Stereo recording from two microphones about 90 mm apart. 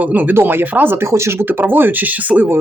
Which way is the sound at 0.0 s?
20° right (ahead or behind).